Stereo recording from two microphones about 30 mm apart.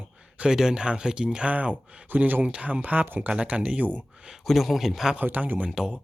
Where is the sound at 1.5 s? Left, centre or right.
Right.